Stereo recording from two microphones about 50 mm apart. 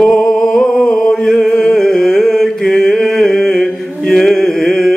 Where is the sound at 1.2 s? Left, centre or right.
Centre.